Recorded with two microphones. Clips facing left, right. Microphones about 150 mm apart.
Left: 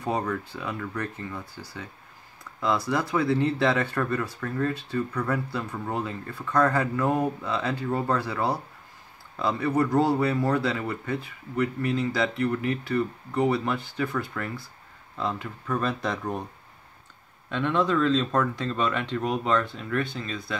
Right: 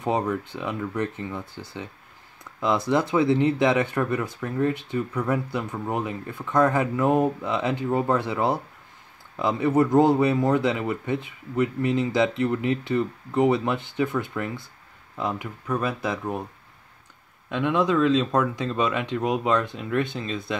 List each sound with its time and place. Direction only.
0.0 s speech: 20° right (ahead or behind)
17.5 s speech: 10° right (ahead or behind)